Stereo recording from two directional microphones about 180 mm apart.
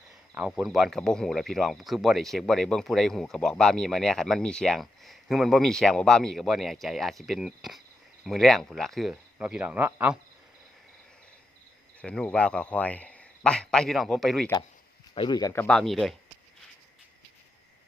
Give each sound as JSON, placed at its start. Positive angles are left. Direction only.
{"t": 0.1, "sound": "speech", "side_deg": -5}
{"t": 12.0, "sound": "speech", "side_deg": 5}
{"t": 15.1, "sound": "speech", "side_deg": 25}
{"t": 15.6, "sound": "speech", "side_deg": 5}